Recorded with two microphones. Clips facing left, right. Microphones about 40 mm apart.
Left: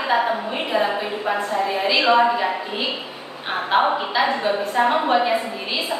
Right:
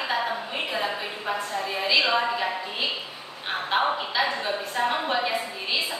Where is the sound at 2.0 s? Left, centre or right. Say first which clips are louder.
Left 7 dB; left.